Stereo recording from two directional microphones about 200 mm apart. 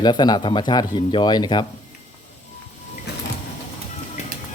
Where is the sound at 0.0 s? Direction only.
20° left (ahead or behind).